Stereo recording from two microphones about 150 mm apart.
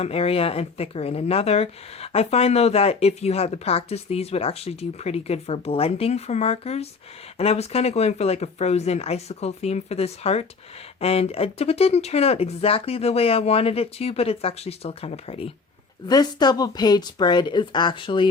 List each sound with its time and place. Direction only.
0.0 s speech: 40° left (ahead or behind)
16.0 s speech: 25° left (ahead or behind)